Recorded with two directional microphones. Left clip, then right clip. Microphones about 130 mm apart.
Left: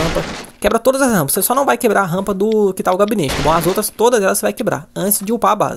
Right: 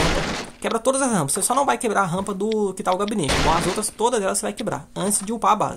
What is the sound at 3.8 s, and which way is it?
Speech, 35° left (ahead or behind).